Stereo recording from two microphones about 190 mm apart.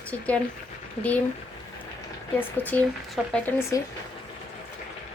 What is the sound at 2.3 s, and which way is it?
Speech, 10° left (ahead or behind).